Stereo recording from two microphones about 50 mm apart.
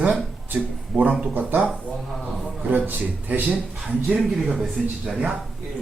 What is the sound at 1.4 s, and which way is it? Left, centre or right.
Speech, right.